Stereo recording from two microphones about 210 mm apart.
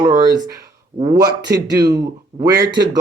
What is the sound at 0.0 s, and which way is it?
Speech, 20° right (ahead or behind).